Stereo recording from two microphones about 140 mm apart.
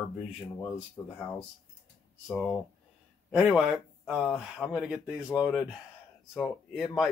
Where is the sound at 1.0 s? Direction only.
15° left (ahead or behind).